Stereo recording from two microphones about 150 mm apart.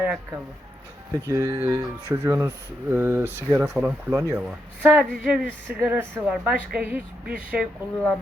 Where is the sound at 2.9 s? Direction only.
15° right (ahead or behind).